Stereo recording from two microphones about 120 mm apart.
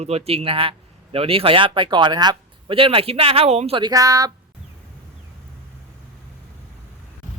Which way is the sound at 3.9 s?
30° right (ahead or behind).